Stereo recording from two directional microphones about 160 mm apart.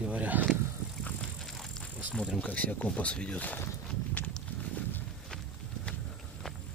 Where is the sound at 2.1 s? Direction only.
5° left (ahead or behind).